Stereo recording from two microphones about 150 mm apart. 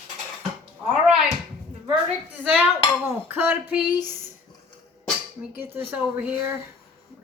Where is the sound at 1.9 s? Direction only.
10° right (ahead or behind).